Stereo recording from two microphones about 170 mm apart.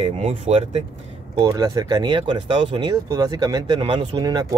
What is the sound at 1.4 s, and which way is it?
Speech, 20° right (ahead or behind).